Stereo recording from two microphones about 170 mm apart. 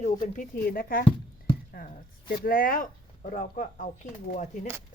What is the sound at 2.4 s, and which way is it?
Speech, 55° left (ahead or behind).